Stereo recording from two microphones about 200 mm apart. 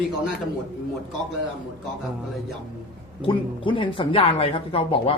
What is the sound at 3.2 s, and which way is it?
Speech, 25° left (ahead or behind).